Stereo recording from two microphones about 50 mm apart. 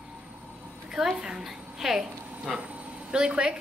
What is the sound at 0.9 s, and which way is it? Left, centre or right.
A woman's voice, centre.